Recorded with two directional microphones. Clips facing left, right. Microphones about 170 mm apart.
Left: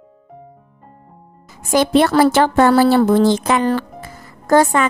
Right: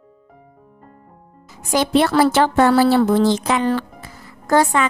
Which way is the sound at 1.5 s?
50° left (ahead or behind).